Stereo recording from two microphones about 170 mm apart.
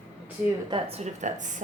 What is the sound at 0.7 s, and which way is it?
Speech, 40° right (ahead or behind).